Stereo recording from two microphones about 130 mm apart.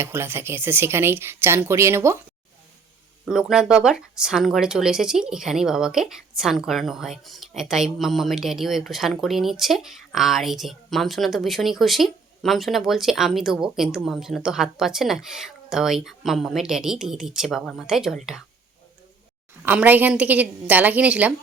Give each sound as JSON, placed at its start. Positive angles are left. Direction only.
{"t": 0.0, "sound": "speech", "side_deg": -20}
{"t": 3.2, "sound": "speech", "side_deg": -5}
{"t": 19.6, "sound": "a woman's voice", "side_deg": -15}